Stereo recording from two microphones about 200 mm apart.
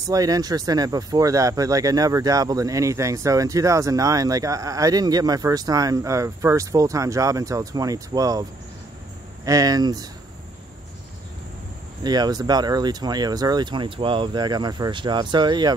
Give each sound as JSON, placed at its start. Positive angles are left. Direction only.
{"t": 0.0, "sound": "speech", "side_deg": -15}
{"t": 12.0, "sound": "speech", "side_deg": -20}